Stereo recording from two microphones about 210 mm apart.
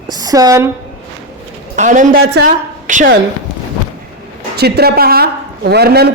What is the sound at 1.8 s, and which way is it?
Speech, 35° right (ahead or behind).